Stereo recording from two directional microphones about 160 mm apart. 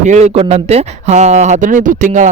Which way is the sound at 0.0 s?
45° right (ahead or behind).